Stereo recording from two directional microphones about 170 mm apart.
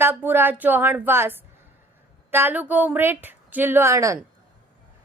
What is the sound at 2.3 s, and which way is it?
A woman's voice, 10° right (ahead or behind).